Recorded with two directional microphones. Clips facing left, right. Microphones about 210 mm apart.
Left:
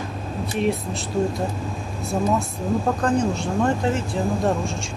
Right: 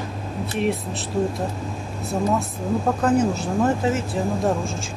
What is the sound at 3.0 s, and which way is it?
Speech, 5° right (ahead or behind).